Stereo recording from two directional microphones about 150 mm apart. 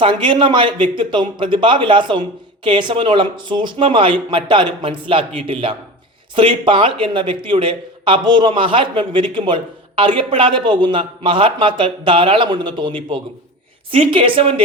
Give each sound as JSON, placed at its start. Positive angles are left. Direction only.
{"t": 0.0, "sound": "speech", "side_deg": -35}